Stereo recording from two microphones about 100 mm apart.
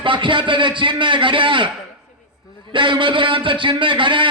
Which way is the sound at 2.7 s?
55° right (ahead or behind).